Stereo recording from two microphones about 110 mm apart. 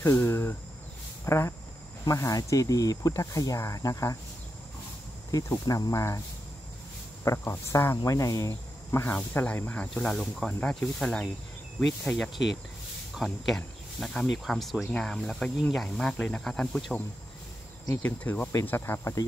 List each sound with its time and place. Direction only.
0.0 s speech: 20° left (ahead or behind)
5.3 s speech: 35° left (ahead or behind)
7.2 s speech: 25° left (ahead or behind); by 17.0 s 5° left (ahead or behind)
18.0 s speech: 15° left (ahead or behind)